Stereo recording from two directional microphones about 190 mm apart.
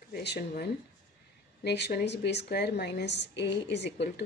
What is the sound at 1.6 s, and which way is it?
A woman's voice, 65° left (ahead or behind).